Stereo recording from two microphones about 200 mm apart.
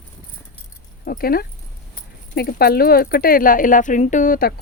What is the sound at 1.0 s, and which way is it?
Speech, 45° left (ahead or behind).